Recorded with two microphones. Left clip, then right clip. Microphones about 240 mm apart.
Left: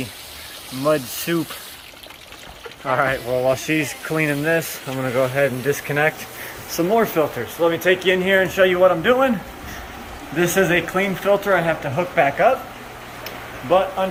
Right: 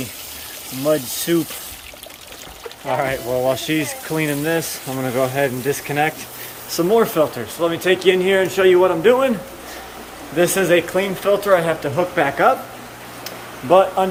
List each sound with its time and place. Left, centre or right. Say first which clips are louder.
1.3 s speech: right 4 dB; centre
2.9 s speech: left 1 dB; centre
6.7 s speech: right 2 dB; right
10.3 s speech: right 2 dB; centre
13.2 s a sound: right 3 dB; centre